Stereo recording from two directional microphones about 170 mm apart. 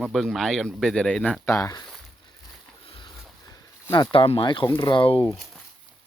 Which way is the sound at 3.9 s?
30° left (ahead or behind).